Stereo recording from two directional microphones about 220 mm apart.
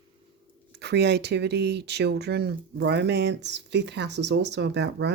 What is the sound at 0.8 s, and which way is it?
Speech, 50° right (ahead or behind).